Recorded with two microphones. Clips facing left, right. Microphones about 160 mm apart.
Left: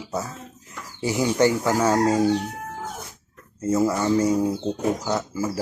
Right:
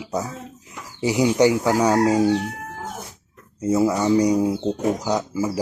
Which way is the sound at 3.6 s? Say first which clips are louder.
Right 2 dB; 10° right (ahead or behind).